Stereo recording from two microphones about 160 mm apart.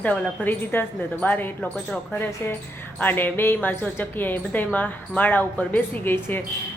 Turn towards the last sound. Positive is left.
turn(degrees=15)  # may be behind; listen again after turning